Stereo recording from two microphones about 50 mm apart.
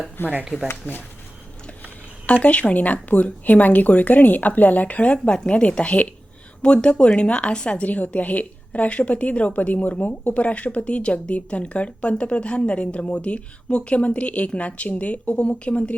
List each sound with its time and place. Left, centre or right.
0.2 s speech: left
2.2 s a woman's voice: left